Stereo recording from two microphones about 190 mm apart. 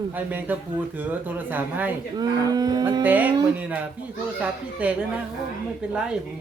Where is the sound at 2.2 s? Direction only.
20° right (ahead or behind).